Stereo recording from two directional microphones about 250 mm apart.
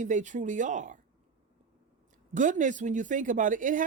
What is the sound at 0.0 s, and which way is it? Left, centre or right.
Speech, right.